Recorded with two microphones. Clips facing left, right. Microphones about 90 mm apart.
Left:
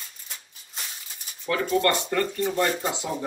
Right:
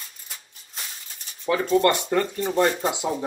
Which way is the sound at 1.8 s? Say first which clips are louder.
Right 3 dB; 15° right (ahead or behind).